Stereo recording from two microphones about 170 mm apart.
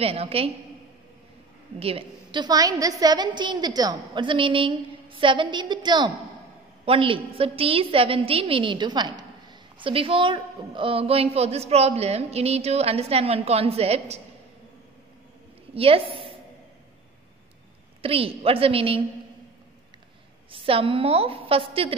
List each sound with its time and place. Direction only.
0.0 s a woman's voice: 35° right (ahead or behind)
1.8 s a woman's voice: 35° right (ahead or behind)
15.7 s a woman's voice: 35° right (ahead or behind)
18.0 s a woman's voice: 35° right (ahead or behind)
20.5 s a woman's voice: 35° right (ahead or behind)